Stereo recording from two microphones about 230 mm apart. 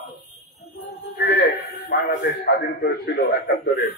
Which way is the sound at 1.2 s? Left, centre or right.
Left.